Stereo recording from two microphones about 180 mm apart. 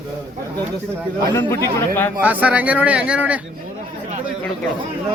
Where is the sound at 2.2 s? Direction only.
10° right (ahead or behind).